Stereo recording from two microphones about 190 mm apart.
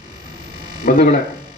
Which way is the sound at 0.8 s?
45° left (ahead or behind).